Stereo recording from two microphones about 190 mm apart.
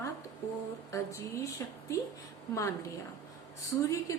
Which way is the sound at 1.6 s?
15° left (ahead or behind).